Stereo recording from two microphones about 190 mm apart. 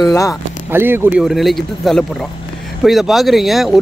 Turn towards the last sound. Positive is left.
turn(degrees=0)  # may be behind; listen again after turning